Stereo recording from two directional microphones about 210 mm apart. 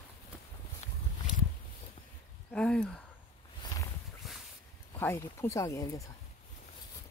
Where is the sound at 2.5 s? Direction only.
5° left (ahead or behind).